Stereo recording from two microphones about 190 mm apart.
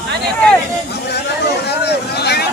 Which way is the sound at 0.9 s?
60° left (ahead or behind).